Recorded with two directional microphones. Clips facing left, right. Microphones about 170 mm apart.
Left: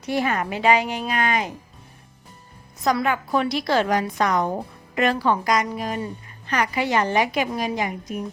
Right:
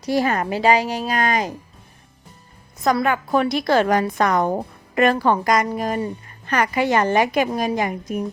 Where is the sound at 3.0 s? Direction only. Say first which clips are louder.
Right 3 dB; 50° right (ahead or behind).